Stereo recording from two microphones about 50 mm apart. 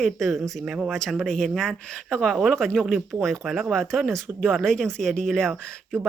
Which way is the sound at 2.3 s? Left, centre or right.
Centre.